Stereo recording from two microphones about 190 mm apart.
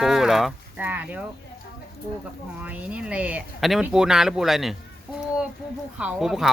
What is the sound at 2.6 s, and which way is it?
Speech, 5° right (ahead or behind).